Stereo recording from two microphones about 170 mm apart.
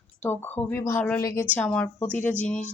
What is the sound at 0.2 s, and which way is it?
A woman's voice, 10° left (ahead or behind).